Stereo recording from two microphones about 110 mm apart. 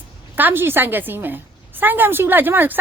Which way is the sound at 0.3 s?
20° right (ahead or behind).